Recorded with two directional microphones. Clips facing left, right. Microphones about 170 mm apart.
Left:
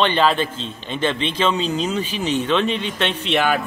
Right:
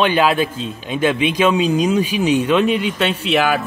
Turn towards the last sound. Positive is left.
turn(degrees=-5)  # may be behind; listen again after turning